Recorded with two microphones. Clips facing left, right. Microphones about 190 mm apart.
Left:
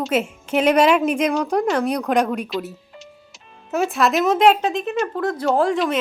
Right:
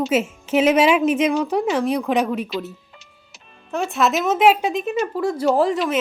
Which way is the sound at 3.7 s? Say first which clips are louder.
Left 1 dB; centre (ahead or behind).